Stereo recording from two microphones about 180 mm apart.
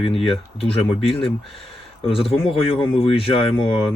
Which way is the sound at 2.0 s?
30° left (ahead or behind).